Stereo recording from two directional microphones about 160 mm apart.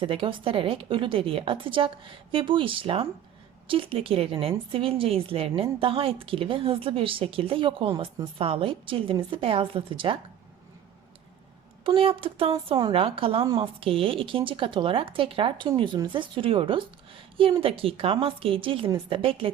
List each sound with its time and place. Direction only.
0.0 s a woman's voice: 35° right (ahead or behind)
11.8 s a woman's voice: 35° right (ahead or behind)
13.4 s a woman's voice: 25° right (ahead or behind)
13.7 s a woman's voice: 35° right (ahead or behind)